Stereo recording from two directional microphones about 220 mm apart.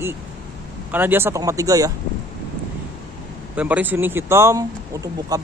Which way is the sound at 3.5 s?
5° right (ahead or behind).